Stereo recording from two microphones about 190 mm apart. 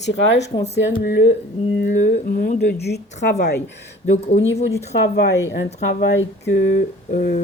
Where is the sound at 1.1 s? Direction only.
65° left (ahead or behind).